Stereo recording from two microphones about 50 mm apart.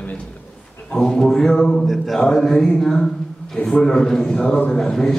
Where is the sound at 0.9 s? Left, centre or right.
Centre.